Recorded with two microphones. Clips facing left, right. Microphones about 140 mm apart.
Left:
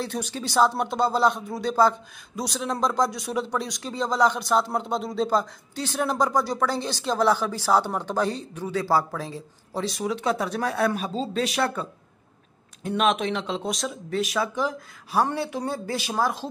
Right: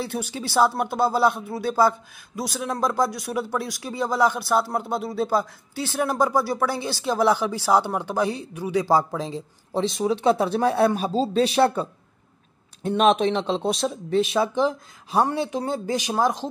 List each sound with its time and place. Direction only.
0.0 s speech: 10° right (ahead or behind)